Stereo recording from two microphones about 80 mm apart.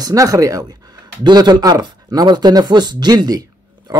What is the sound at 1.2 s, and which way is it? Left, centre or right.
Speech, right.